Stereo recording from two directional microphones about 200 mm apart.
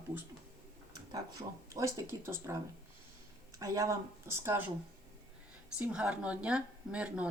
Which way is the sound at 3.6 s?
15° right (ahead or behind).